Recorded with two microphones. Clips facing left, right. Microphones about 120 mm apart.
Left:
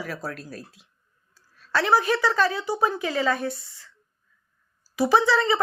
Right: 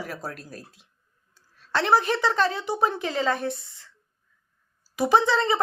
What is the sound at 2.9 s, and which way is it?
Speech, 25° right (ahead or behind).